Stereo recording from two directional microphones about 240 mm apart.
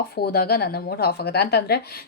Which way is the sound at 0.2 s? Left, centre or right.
Left.